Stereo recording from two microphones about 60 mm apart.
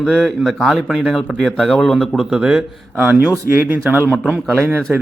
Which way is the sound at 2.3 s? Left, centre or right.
Centre.